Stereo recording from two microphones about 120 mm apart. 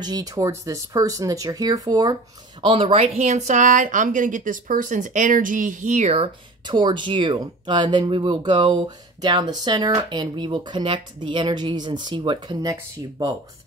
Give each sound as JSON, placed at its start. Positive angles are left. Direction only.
{"t": 0.0, "sound": "speech", "side_deg": -30}
{"t": 2.6, "sound": "speech", "side_deg": -50}
{"t": 6.1, "sound": "speech", "side_deg": -45}